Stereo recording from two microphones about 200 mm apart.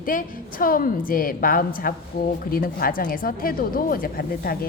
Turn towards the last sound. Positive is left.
turn(degrees=45)  # may be behind; listen again after turning